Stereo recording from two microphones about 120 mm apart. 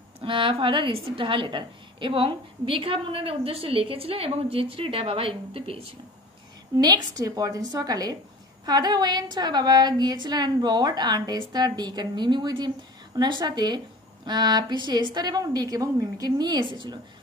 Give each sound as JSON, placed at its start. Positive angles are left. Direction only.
{"t": 0.2, "sound": "a woman's voice", "side_deg": -45}
{"t": 6.8, "sound": "a woman's voice", "side_deg": -35}